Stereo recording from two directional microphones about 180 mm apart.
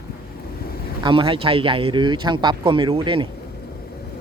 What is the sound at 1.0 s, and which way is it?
Speech, 30° right (ahead or behind).